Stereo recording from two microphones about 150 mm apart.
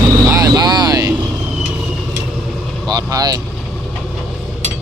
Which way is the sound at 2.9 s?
25° right (ahead or behind).